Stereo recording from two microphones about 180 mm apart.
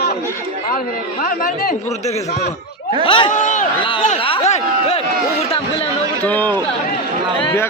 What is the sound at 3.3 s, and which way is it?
Speech, 45° left (ahead or behind).